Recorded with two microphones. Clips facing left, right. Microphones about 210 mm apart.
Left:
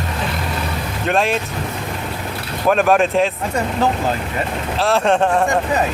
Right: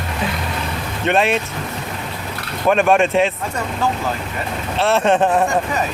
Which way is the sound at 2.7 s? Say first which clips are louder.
Even; centre (ahead or behind).